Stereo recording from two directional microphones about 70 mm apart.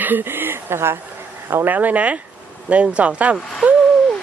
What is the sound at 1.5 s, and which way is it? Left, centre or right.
A woman's voice, right.